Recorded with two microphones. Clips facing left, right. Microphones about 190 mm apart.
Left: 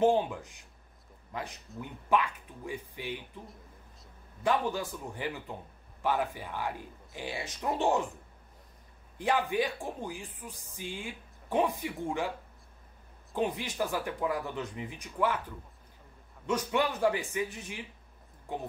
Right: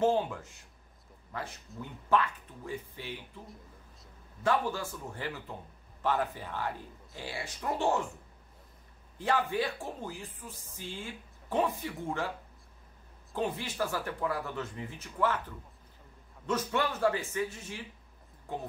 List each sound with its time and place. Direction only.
0.0 s speech: 15° left (ahead or behind)
4.4 s speech: 15° left (ahead or behind)
9.2 s speech: 15° left (ahead or behind)
13.3 s speech: 15° left (ahead or behind)
16.4 s speech: 15° left (ahead or behind)